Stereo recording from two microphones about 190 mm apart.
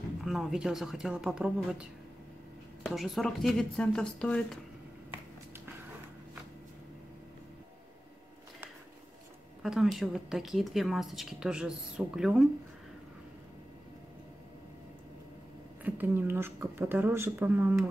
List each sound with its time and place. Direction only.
0.2 s speech: centre (ahead or behind)
9.6 s speech: centre (ahead or behind)
15.8 s speech: 10° right (ahead or behind)